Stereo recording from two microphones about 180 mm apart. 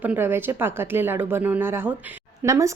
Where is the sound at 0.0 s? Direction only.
10° right (ahead or behind).